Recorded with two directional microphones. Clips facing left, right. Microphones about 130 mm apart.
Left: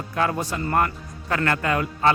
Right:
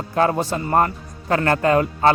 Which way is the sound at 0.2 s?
30° right (ahead or behind).